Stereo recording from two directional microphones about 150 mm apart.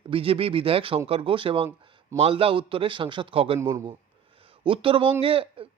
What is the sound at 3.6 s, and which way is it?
Speech, 20° right (ahead or behind).